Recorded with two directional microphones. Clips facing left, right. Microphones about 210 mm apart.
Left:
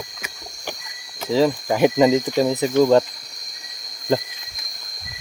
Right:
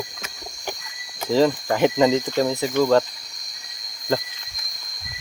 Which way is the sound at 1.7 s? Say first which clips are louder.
Left 2 dB; 15° left (ahead or behind).